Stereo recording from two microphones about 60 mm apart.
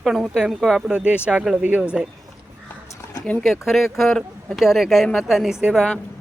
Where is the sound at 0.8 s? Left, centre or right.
Centre.